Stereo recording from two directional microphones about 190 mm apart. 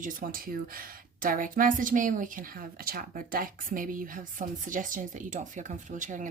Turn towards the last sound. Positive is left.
turn(degrees=-40)  # may be behind; listen again after turning